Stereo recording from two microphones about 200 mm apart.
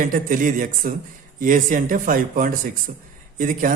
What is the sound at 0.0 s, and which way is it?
Speech, 40° right (ahead or behind).